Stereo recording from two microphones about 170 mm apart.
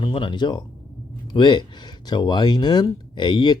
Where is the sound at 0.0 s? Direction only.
30° left (ahead or behind).